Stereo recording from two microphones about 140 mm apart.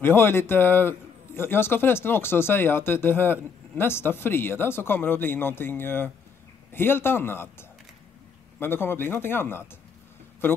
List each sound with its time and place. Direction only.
0.0 s a man's voice: 15° left (ahead or behind)